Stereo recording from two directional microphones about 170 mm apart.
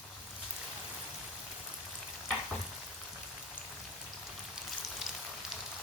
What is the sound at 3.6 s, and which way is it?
Rain on surface, 10° left (ahead or behind).